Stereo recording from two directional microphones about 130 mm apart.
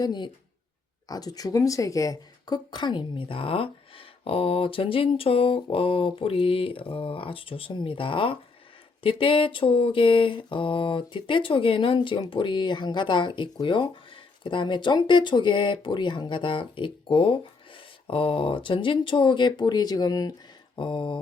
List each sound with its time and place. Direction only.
0.0 s speech: 35° left (ahead or behind)